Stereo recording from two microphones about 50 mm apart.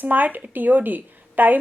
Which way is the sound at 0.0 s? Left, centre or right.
Right.